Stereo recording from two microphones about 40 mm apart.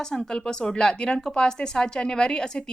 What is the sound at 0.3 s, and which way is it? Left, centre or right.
Speech, centre.